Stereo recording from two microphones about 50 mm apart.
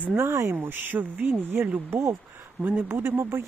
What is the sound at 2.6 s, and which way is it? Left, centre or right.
Speech, right.